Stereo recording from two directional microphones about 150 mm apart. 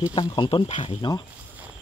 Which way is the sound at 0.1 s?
30° left (ahead or behind).